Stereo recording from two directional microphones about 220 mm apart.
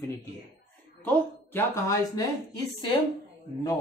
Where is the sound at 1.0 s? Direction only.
10° left (ahead or behind).